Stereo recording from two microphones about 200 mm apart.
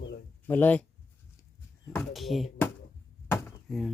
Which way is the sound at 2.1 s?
Centre (ahead or behind).